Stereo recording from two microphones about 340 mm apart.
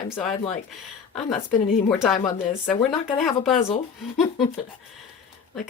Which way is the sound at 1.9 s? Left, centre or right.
Centre.